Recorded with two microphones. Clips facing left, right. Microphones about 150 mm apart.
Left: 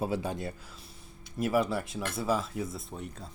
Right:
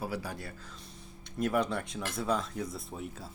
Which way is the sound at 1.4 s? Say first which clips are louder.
Left 2 dB; 5° left (ahead or behind).